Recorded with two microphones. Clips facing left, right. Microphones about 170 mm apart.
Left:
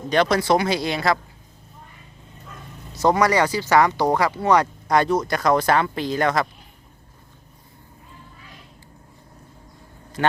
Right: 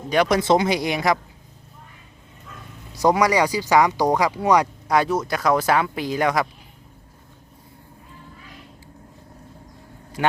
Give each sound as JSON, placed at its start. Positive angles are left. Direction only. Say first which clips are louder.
{"t": 0.1, "sound": "speech", "louder": "right 1 dB", "side_deg": -15}
{"t": 2.9, "sound": "speech", "louder": "even", "side_deg": -15}
{"t": 10.2, "sound": "speech", "louder": "even", "side_deg": -10}